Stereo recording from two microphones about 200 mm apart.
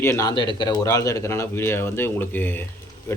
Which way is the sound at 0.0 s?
15° left (ahead or behind).